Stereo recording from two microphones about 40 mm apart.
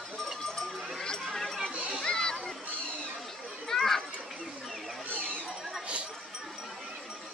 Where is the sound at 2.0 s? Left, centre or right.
Centre.